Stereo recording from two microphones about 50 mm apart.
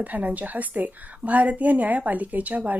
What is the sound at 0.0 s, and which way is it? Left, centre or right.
A woman's voice, right.